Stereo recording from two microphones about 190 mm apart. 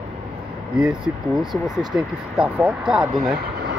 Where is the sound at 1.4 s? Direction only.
Centre (ahead or behind).